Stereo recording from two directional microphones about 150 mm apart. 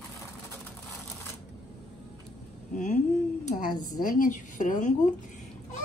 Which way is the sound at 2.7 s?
55° left (ahead or behind).